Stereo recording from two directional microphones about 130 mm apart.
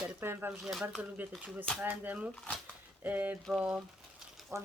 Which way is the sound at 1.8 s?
15° right (ahead or behind).